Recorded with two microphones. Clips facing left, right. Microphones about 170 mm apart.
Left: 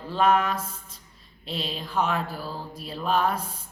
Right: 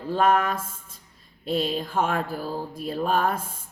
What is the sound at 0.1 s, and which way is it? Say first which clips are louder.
Speech: right 1 dB; 50° right (ahead or behind).